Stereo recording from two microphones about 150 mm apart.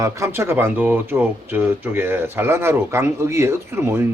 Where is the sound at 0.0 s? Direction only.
20° right (ahead or behind).